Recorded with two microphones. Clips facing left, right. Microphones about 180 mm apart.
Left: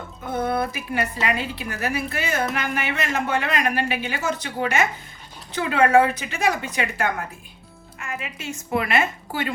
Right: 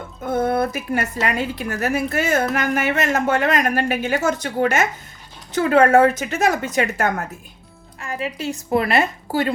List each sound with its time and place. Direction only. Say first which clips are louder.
0.3 s a woman's voice: right 4 dB; 45° right (ahead or behind)